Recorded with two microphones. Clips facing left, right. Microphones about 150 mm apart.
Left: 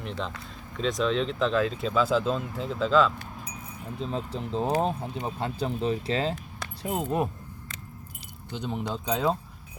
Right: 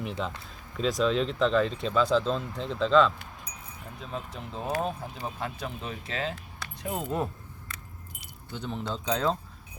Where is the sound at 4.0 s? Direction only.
30° left (ahead or behind).